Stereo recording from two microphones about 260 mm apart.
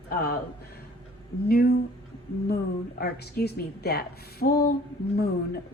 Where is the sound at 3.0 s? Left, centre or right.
Left.